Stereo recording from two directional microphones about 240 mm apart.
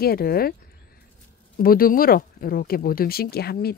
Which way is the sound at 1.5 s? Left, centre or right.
Left.